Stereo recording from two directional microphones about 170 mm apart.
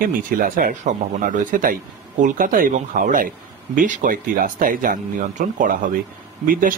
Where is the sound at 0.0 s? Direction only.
55° right (ahead or behind).